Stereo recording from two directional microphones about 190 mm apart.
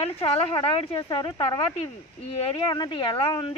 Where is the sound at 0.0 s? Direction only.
30° left (ahead or behind).